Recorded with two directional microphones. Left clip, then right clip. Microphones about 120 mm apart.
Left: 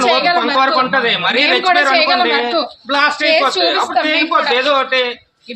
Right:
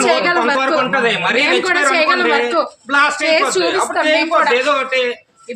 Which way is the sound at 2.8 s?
10° left (ahead or behind).